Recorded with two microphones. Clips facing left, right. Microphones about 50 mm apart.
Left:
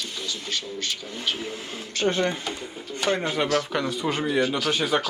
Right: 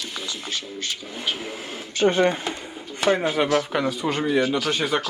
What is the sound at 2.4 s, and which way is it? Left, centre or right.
Speech, centre.